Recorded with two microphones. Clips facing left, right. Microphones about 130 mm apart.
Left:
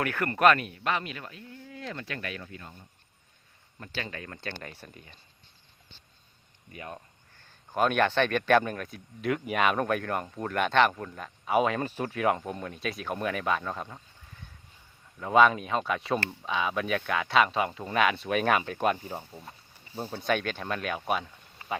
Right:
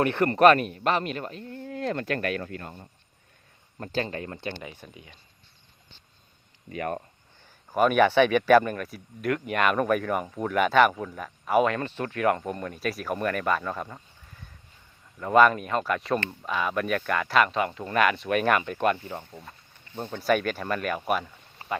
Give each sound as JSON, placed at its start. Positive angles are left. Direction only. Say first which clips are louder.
{"t": 0.0, "sound": "speech", "louder": "right 5 dB", "side_deg": -30}
{"t": 3.8, "sound": "speech", "louder": "right 8 dB", "side_deg": -40}
{"t": 4.7, "sound": "speech", "louder": "right 2 dB", "side_deg": -10}
{"t": 6.7, "sound": "speech", "louder": "right 11 dB", "side_deg": -90}
{"t": 7.3, "sound": "speech", "louder": "right 4 dB", "side_deg": -10}
{"t": 20.2, "sound": "speech", "louder": "right 5 dB", "side_deg": -5}
{"t": 21.6, "sound": "a sound", "louder": "right 2 dB", "side_deg": -30}